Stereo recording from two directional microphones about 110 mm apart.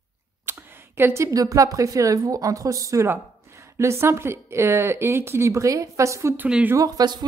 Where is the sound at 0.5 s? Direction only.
20° right (ahead or behind).